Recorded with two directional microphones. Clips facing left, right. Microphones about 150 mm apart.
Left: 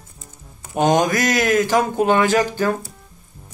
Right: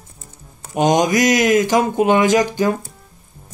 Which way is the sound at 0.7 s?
15° right (ahead or behind).